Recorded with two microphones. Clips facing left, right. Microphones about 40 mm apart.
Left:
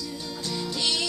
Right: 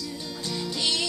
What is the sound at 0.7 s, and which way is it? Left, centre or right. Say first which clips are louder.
Music: even; right.